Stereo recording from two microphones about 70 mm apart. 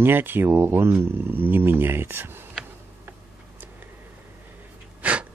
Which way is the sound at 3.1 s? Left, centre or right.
Right.